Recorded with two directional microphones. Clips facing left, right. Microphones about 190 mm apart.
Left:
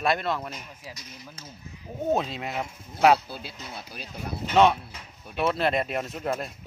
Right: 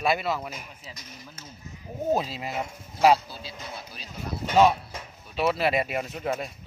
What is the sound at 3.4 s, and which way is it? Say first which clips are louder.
Speech: right 1 dB; 55° left (ahead or behind).